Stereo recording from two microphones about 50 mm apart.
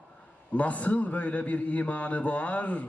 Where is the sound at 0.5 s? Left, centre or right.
Left.